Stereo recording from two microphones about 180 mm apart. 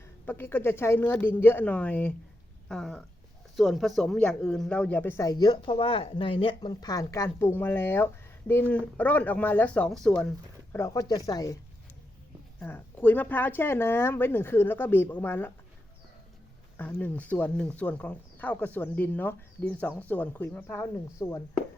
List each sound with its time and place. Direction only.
0.3 s speech: 10° left (ahead or behind)
2.6 s a sound: centre (ahead or behind)
3.5 s speech: centre (ahead or behind)
10.8 s speech: 15° left (ahead or behind)
12.5 s speech: 10° left (ahead or behind)
16.7 s speech: 10° left (ahead or behind)